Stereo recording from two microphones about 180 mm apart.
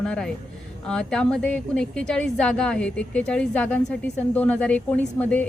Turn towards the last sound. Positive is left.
turn(degrees=10)  # may be behind; listen again after turning